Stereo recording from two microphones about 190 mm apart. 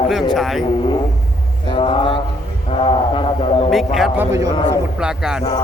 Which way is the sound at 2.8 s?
30° left (ahead or behind).